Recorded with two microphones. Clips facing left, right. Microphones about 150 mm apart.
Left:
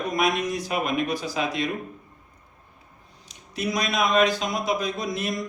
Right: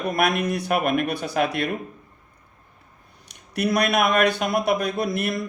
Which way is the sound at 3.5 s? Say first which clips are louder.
Right 5 dB; 65° right (ahead or behind).